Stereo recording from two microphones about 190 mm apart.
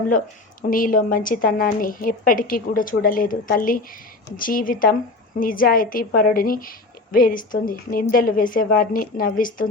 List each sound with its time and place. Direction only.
0.7 s a woman's voice: 45° left (ahead or behind)